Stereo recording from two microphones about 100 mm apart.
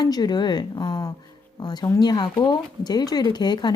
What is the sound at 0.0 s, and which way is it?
Speech, 45° left (ahead or behind).